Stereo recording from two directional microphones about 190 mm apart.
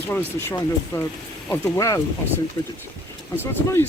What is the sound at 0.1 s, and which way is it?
Speech, 10° left (ahead or behind).